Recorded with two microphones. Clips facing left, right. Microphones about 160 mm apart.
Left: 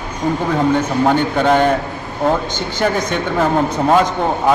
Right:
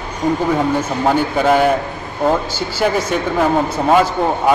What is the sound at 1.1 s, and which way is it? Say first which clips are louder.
Speech: right 1 dB; 5° right (ahead or behind).